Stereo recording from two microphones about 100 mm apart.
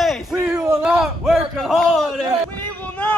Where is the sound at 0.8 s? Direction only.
5° right (ahead or behind).